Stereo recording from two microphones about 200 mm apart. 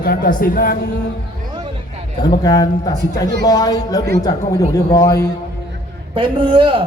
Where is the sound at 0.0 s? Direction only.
50° left (ahead or behind).